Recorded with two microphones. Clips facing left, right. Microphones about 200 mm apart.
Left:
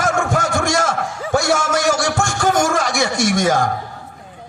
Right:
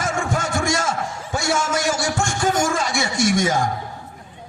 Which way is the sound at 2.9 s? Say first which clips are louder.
Left 2 dB; 70° left (ahead or behind).